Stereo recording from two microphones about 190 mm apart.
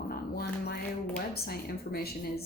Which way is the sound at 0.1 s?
55° left (ahead or behind).